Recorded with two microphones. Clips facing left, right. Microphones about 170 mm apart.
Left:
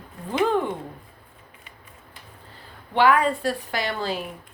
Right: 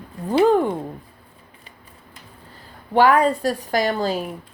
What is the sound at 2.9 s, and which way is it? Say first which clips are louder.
A woman's voice: right 4 dB; 40° right (ahead or behind).